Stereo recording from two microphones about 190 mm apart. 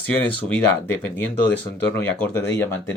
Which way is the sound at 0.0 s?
10° left (ahead or behind).